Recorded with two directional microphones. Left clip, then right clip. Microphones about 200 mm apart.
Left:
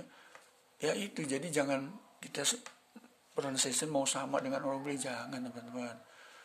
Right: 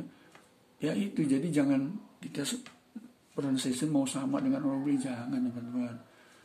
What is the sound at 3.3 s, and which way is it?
A man's voice, 40° left (ahead or behind).